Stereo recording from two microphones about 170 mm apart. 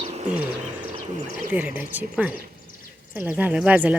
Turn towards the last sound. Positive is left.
turn(degrees=-5)  # may be behind; listen again after turning